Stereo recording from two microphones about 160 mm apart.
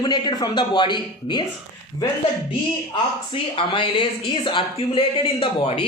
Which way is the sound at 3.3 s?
35° left (ahead or behind).